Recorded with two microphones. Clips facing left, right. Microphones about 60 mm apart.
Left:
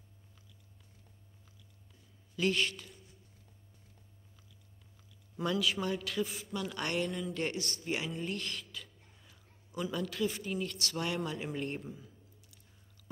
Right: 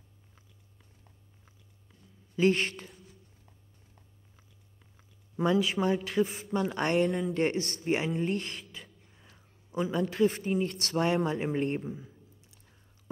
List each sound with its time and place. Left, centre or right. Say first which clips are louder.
2.3 s speech: right 6 dB; right
5.4 s speech: right 6 dB; right
7.0 s speech: right 8 dB; right
7.3 s speech: right 7 dB; right
9.7 s speech: right 6 dB; right
11.8 s a sound: right 7 dB; right